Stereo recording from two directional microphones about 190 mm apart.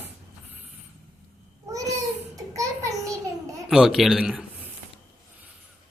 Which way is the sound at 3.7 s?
Centre (ahead or behind).